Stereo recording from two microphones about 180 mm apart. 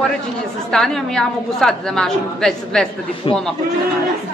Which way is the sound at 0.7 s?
Centre (ahead or behind).